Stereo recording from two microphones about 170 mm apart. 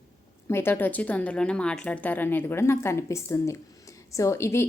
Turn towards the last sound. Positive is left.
turn(degrees=15)  # may be behind; listen again after turning